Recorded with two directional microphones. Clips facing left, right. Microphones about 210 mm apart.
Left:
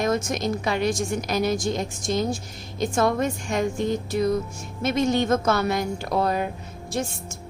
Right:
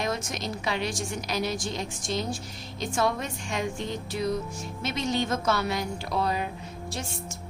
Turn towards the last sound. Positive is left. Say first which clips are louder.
# left 7 dB
turn(degrees=50)  # may be behind; listen again after turning